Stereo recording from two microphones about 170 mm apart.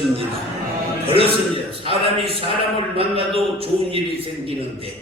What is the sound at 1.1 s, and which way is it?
Speech, 35° right (ahead or behind).